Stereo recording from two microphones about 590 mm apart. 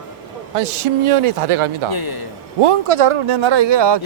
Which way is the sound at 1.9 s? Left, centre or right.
Left.